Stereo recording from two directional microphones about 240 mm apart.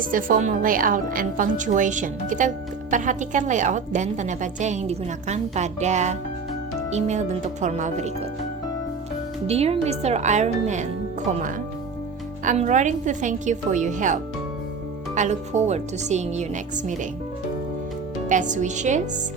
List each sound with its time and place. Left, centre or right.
0.0 s a woman's voice: right
9.5 s a woman's voice: right
12.5 s a woman's voice: right
18.3 s a woman's voice: right